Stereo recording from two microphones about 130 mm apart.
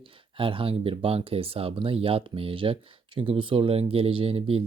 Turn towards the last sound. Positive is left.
turn(degrees=-50)  # may be behind; listen again after turning